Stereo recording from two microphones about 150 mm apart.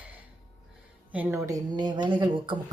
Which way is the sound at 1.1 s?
15° right (ahead or behind).